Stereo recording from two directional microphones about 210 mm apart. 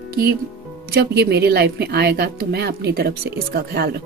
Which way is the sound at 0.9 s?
50° right (ahead or behind).